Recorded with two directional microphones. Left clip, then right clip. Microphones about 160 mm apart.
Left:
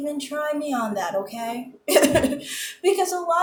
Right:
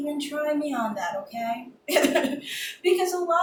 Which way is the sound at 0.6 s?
55° left (ahead or behind).